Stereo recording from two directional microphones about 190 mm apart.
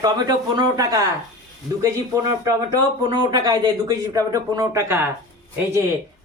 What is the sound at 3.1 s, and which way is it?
Speech, 20° right (ahead or behind).